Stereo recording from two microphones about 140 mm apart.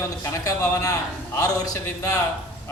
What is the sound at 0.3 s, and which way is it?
A man's voice, 25° left (ahead or behind).